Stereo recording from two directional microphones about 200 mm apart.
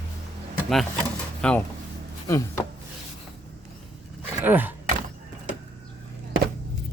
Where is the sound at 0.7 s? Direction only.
5° left (ahead or behind).